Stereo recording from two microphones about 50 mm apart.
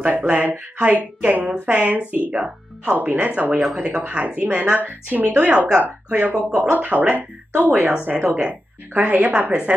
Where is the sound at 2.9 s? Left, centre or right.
Right.